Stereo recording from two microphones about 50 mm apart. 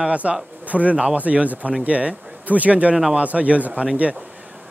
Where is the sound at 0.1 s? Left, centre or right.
Right.